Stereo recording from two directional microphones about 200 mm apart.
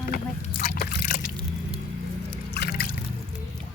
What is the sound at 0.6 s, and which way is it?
Speech, 45° left (ahead or behind).